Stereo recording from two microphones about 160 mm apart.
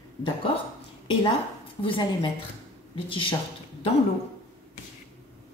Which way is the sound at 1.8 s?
30° left (ahead or behind).